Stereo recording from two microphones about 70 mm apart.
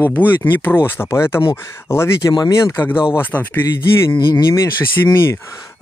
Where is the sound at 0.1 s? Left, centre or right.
Left.